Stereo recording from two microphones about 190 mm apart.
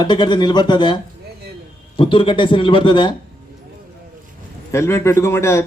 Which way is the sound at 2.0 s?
25° left (ahead or behind).